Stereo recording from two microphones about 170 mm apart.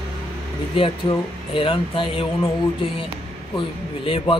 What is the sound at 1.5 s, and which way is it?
Speech, 30° left (ahead or behind).